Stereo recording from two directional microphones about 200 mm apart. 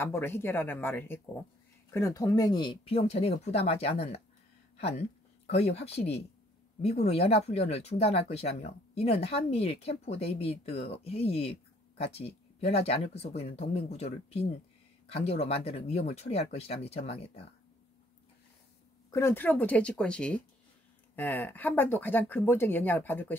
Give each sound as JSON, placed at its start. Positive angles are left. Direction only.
{"t": 0.0, "sound": "speech", "side_deg": 10}
{"t": 5.5, "sound": "speech", "side_deg": 30}
{"t": 19.0, "sound": "speech", "side_deg": 15}